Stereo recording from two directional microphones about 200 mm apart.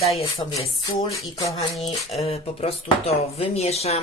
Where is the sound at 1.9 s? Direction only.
30° left (ahead or behind).